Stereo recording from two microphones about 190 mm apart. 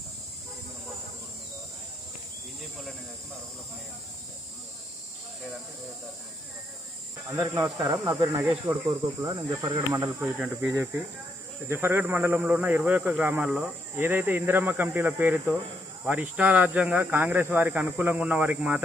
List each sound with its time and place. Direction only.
7.3 s speech: 15° right (ahead or behind)